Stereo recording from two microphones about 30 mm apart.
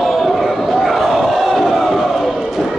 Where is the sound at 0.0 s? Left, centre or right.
Centre.